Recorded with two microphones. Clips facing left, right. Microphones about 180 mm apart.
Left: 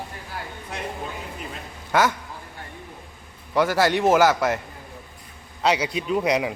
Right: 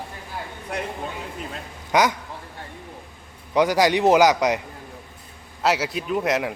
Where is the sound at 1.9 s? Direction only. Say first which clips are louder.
Right 1 dB; 15° right (ahead or behind).